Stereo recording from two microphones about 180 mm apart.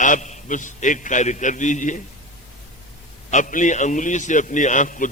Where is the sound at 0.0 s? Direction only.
40° left (ahead or behind).